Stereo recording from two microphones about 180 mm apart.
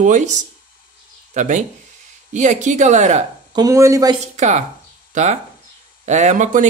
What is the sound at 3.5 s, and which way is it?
Speech, 20° right (ahead or behind).